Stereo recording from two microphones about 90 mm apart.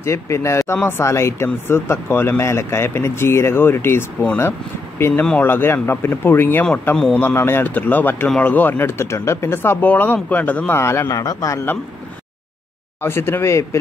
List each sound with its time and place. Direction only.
0.0 s a man's voice: 30° left (ahead or behind)
10.7 s a man's voice: 30° left (ahead or behind)
13.0 s speech: 25° left (ahead or behind)